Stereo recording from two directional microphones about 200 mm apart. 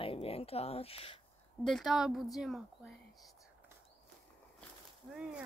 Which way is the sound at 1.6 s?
Centre (ahead or behind).